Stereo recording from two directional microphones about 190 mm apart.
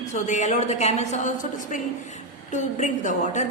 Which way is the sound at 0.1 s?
40° left (ahead or behind).